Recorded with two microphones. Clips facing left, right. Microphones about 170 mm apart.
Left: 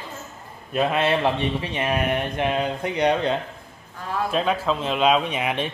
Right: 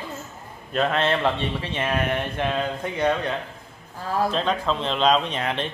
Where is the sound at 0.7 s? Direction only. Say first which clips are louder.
Left 1 dB; 10° left (ahead or behind).